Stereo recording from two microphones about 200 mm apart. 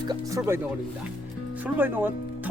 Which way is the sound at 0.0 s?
20° right (ahead or behind).